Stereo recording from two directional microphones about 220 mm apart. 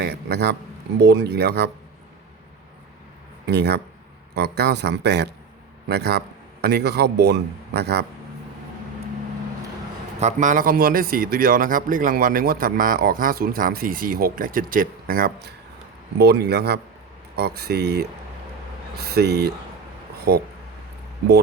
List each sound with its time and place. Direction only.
0.0 s a sound: 50° right (ahead or behind)
0.9 s a man's voice: 50° right (ahead or behind)
3.4 s a man's voice: 50° right (ahead or behind)
10.2 s a man's voice: 35° right (ahead or behind)